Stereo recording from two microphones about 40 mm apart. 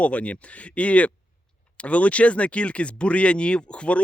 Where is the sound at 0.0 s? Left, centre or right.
Left.